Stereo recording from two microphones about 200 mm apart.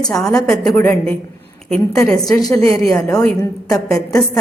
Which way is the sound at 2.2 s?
15° left (ahead or behind).